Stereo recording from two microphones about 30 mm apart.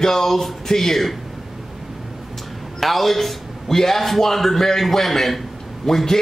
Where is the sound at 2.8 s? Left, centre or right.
Centre.